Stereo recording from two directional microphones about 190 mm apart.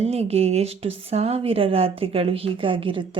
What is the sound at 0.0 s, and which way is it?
Speech, 30° right (ahead or behind).